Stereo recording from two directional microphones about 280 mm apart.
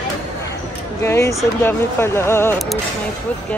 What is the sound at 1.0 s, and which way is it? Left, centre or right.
Speech, centre.